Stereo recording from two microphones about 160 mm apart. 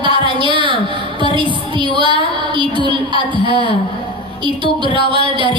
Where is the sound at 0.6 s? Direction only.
30° right (ahead or behind).